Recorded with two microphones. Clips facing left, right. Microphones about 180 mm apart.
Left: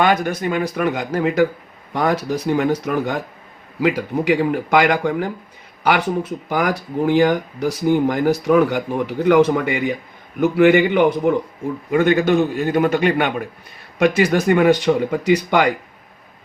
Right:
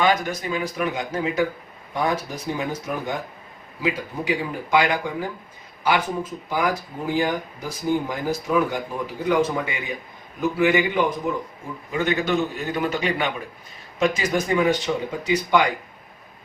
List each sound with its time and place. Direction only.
0.0 s speech: 55° left (ahead or behind)
11.9 s a man's voice: 50° left (ahead or behind)